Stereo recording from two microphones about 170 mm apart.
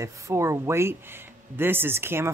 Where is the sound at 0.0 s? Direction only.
15° right (ahead or behind).